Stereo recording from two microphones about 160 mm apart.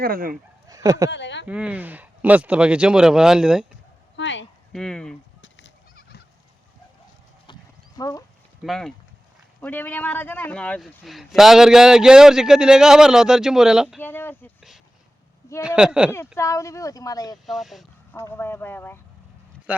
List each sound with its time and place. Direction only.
0.0 s speech: 65° right (ahead or behind)
0.7 s speech: 20° right (ahead or behind)
1.1 s speech: 90° left
1.5 s speech: 10° right (ahead or behind)
4.7 s a man's voice: 5° left (ahead or behind)
7.9 s speech: 20° left (ahead or behind)
8.6 s a man's voice: centre (ahead or behind)
14.0 s speech: 10° left (ahead or behind)
15.6 s a man's voice: 5° right (ahead or behind)
16.1 s speech: 15° left (ahead or behind)
17.4 s a man's voice: centre (ahead or behind)
18.1 s speech: 15° left (ahead or behind)